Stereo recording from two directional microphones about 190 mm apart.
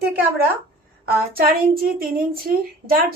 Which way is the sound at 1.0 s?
50° right (ahead or behind).